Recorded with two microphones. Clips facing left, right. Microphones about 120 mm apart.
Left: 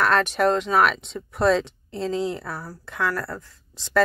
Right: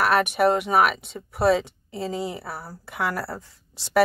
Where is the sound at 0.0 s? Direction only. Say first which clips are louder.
Even; 10° right (ahead or behind).